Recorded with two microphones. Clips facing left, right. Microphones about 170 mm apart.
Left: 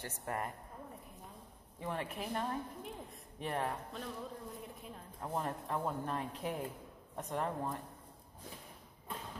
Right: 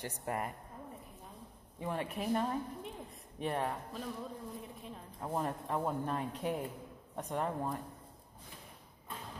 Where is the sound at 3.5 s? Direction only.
10° right (ahead or behind).